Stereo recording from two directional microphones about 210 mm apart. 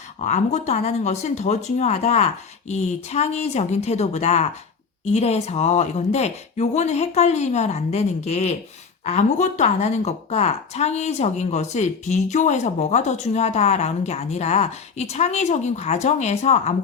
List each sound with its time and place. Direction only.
0.2 s a woman's voice: 35° left (ahead or behind)